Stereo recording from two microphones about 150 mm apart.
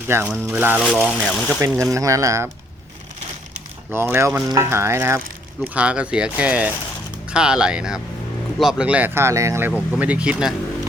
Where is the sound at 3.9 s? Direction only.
15° right (ahead or behind).